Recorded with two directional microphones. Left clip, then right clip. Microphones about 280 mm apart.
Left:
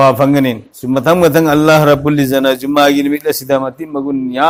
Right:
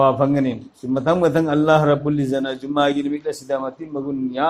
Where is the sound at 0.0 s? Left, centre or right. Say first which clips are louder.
Left 7 dB; left.